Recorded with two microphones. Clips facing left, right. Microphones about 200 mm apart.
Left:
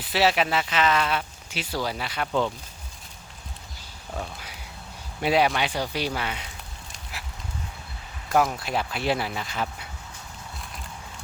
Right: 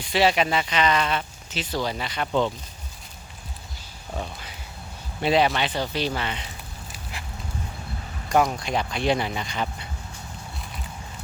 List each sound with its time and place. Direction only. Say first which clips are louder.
0.0 s speech: right 2 dB; 5° left (ahead or behind)
5.2 s speech: right 1 dB; 10° left (ahead or behind)
6.9 s a sound: right 2 dB; 5° left (ahead or behind)
8.3 s speech: right 1 dB; 5° left (ahead or behind)